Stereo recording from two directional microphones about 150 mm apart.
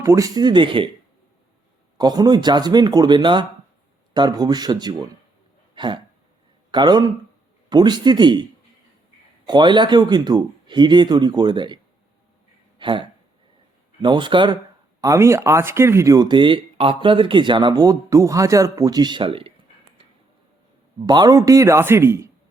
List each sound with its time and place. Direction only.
0.0 s speech: 20° right (ahead or behind)
2.0 s speech: 25° right (ahead or behind)
5.7 s hiccup: 30° right (ahead or behind)
6.7 s speech: 30° right (ahead or behind)
9.5 s speech: 30° right (ahead or behind)
12.8 s speech: 30° right (ahead or behind)
15.0 s speech: 20° right (ahead or behind); by 19.5 s 40° right (ahead or behind)
21.1 s speech: 25° right (ahead or behind)